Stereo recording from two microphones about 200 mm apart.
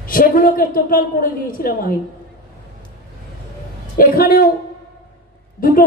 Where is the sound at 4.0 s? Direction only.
45° left (ahead or behind).